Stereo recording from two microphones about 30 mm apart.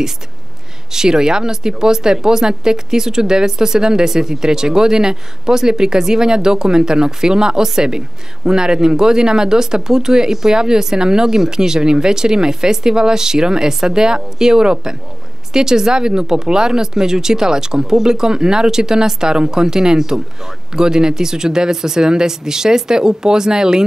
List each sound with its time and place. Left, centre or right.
0.9 s speech: right